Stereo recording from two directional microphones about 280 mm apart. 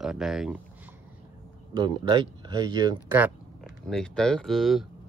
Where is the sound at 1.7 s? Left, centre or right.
Centre.